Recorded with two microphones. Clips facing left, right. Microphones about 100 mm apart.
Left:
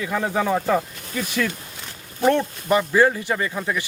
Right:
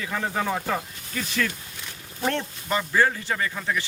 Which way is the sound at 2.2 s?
15° left (ahead or behind).